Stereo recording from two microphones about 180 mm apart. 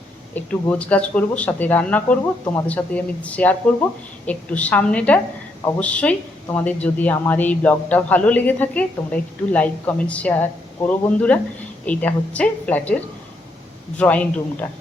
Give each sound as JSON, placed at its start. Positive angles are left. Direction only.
{"t": 0.3, "sound": "a man's voice", "side_deg": 5}
{"t": 14.0, "sound": "a man's voice", "side_deg": 5}